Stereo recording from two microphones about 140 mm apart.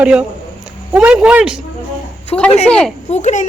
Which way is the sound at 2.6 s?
5° left (ahead or behind).